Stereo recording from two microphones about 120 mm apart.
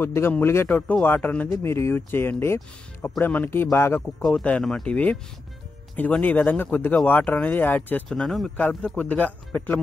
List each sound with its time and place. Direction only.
0.0 s a man's voice: 20° left (ahead or behind)
4.0 s speech: 5° left (ahead or behind)
8.2 s speech: centre (ahead or behind)
8.5 s speech: 10° left (ahead or behind)